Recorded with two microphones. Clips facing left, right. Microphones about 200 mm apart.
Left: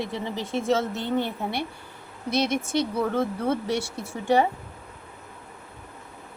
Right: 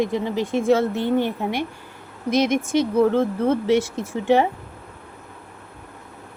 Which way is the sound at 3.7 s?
20° right (ahead or behind).